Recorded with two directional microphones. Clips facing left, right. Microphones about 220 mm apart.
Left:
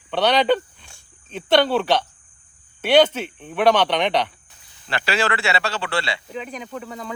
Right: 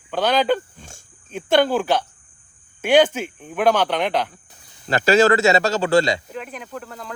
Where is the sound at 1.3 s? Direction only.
10° right (ahead or behind).